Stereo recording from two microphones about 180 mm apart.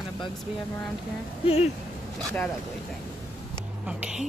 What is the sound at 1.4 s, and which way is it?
Speech, 35° left (ahead or behind).